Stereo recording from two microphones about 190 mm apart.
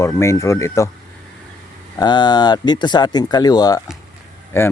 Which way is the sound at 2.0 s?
20° left (ahead or behind).